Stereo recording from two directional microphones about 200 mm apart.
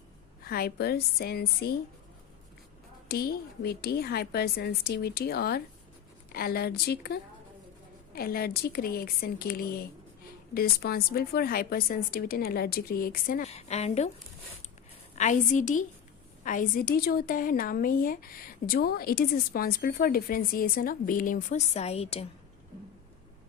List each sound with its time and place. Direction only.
0.4 s a woman's voice: 50° left (ahead or behind)
3.1 s a woman's voice: 50° left (ahead or behind); by 14.1 s 35° left (ahead or behind)
15.1 s a woman's voice: 35° left (ahead or behind)